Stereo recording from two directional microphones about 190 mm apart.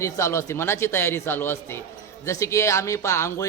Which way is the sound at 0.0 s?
15° left (ahead or behind).